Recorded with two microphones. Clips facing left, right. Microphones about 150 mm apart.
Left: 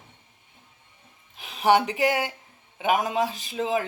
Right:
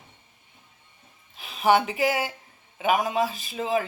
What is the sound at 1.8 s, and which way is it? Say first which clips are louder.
Speech: left 1 dB; 5° right (ahead or behind).